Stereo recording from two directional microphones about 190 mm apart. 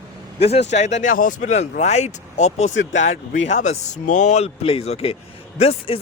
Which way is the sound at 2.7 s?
75° left (ahead or behind).